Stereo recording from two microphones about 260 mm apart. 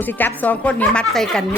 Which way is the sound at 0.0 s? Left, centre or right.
Centre.